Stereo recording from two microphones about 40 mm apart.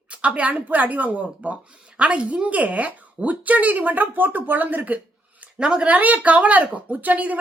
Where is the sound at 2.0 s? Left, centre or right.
Right.